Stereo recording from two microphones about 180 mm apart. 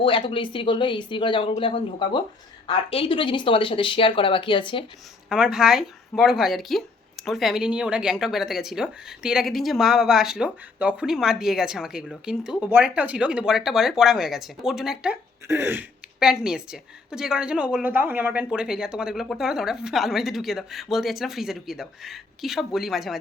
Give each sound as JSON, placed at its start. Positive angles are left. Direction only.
{"t": 0.0, "sound": "speech", "side_deg": 30}
{"t": 5.3, "sound": "speech", "side_deg": -5}